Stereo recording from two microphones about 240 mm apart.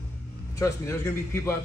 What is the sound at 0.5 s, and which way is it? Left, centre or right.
A man's voice, centre.